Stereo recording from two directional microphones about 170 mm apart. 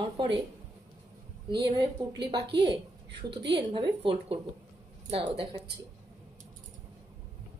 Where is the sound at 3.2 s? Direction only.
30° right (ahead or behind).